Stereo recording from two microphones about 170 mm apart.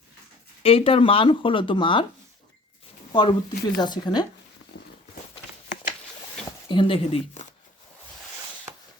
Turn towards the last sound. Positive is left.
turn(degrees=35)  # may be behind; listen again after turning